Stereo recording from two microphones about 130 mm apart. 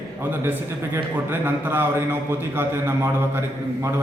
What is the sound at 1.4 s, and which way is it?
Speech, 15° right (ahead or behind).